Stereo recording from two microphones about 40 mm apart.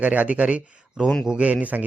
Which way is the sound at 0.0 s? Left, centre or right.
Right.